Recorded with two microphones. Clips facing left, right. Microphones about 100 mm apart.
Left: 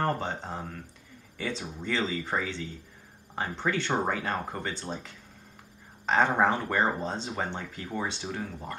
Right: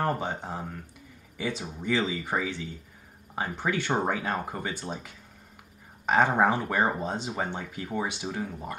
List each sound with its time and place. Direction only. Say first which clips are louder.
0.0 s speech: right 1 dB; 10° right (ahead or behind)